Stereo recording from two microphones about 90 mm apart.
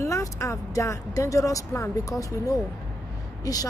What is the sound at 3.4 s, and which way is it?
Speech, 45° left (ahead or behind).